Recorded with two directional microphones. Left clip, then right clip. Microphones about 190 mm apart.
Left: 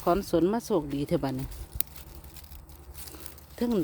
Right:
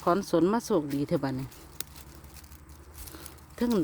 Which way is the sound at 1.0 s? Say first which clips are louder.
Even; 10° left (ahead or behind).